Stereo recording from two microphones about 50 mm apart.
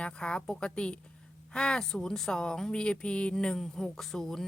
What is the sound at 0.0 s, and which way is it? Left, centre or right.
A woman's voice, centre.